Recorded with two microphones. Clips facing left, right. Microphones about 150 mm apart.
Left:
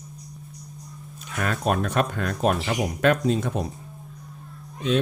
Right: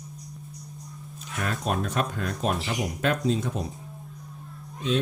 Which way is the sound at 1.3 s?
65° left (ahead or behind).